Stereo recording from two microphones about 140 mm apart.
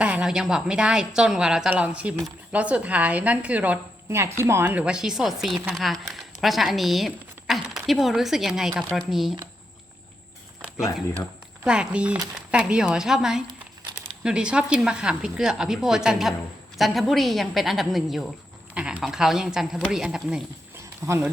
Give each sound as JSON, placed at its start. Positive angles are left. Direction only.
{"t": 0.0, "sound": "a woman's voice", "side_deg": -5}
{"t": 11.6, "sound": "a woman's voice", "side_deg": -5}
{"t": 21.0, "sound": "speech", "side_deg": -20}